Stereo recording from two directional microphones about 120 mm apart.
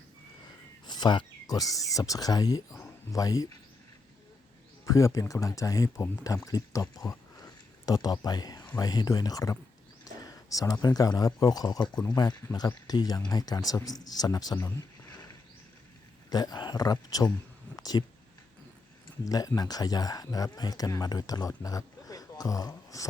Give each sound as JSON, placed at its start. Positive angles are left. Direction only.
{"t": 0.9, "sound": "speech", "side_deg": 35}
{"t": 4.9, "sound": "speech", "side_deg": 25}
{"t": 16.3, "sound": "speech", "side_deg": 35}
{"t": 17.7, "sound": "a sound", "side_deg": 35}
{"t": 19.2, "sound": "speech", "side_deg": 30}